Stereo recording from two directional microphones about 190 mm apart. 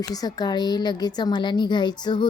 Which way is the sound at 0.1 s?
20° left (ahead or behind).